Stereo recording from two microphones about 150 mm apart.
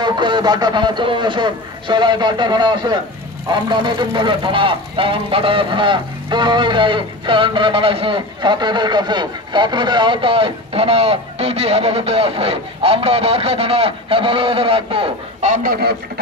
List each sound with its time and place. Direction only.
0.0 s speech: 30° right (ahead or behind)
15.4 s speech: 65° right (ahead or behind)